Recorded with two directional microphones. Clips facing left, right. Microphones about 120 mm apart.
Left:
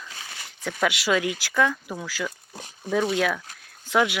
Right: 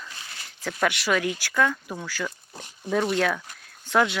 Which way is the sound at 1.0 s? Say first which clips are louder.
Left 1 dB; 20° left (ahead or behind).